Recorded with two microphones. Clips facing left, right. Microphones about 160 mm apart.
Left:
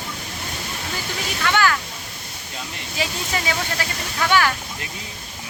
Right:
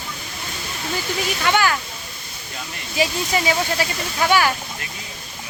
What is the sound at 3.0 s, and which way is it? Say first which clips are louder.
Speech: right 6 dB; 15° right (ahead or behind).